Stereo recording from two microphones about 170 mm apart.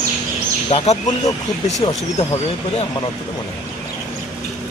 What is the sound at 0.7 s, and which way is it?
Speech, 35° left (ahead or behind).